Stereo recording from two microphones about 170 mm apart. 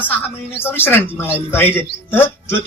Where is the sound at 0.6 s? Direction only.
10° left (ahead or behind).